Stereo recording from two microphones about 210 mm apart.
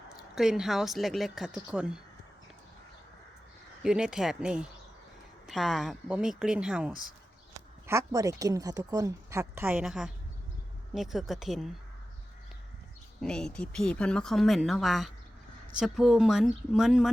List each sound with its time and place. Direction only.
0.1 s speech: centre (ahead or behind)
3.8 s speech: 5° right (ahead or behind)
7.9 s a woman's voice: 15° right (ahead or behind)
13.2 s speech: 5° left (ahead or behind)